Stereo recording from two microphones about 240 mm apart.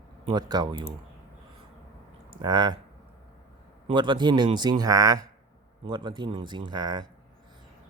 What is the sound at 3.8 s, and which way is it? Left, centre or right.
Speech, centre.